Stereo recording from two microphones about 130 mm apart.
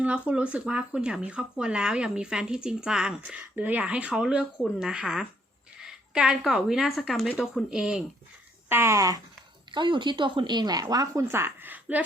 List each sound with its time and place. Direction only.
0.0 s a woman's voice: 10° right (ahead or behind)
8.7 s speech: 20° right (ahead or behind)
9.7 s speech: 35° right (ahead or behind); by 12.0 s 15° right (ahead or behind)